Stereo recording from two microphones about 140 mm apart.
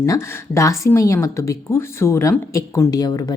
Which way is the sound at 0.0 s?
20° left (ahead or behind).